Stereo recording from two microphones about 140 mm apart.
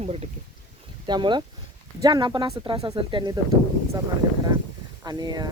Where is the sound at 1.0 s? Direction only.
30° right (ahead or behind).